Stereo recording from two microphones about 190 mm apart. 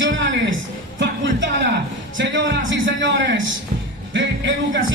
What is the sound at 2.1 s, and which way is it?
A man's voice, 75° right (ahead or behind).